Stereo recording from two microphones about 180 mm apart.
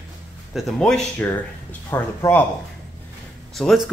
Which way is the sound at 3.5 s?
Centre (ahead or behind).